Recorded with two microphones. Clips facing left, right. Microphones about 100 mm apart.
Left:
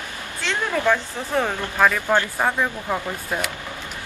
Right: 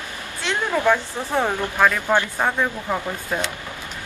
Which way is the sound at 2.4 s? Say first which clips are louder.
Even; centre (ahead or behind).